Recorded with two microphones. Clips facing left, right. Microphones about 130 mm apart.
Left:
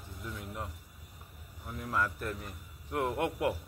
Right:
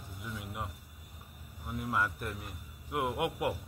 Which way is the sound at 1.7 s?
10° right (ahead or behind).